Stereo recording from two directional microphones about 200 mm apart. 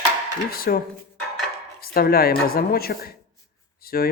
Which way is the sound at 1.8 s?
50° left (ahead or behind).